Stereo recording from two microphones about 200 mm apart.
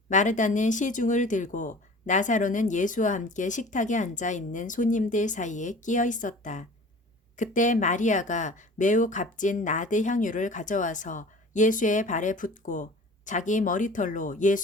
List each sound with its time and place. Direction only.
0.1 s speech: 40° left (ahead or behind)